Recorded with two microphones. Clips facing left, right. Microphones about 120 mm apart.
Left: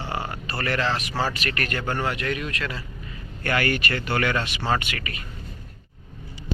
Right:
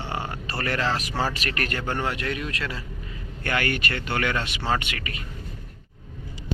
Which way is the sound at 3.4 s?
15° right (ahead or behind).